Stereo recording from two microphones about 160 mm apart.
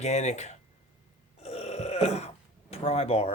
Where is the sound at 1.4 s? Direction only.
40° left (ahead or behind).